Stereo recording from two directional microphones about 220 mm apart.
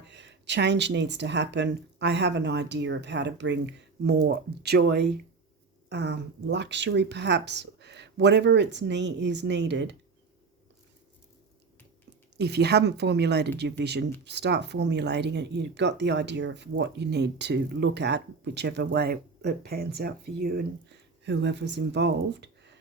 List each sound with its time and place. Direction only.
0.0 s speech: 50° right (ahead or behind)
12.4 s speech: 50° right (ahead or behind)